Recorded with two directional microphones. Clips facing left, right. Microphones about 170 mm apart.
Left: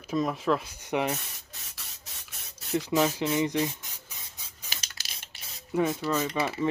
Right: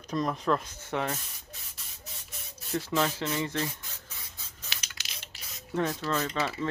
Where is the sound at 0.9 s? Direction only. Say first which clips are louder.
Left 3 dB; 15° left (ahead or behind).